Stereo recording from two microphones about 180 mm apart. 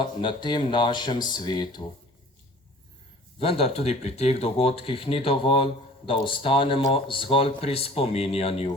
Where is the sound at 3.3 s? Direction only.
30° left (ahead or behind).